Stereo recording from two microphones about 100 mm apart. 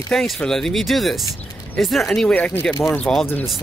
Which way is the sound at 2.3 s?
15° left (ahead or behind).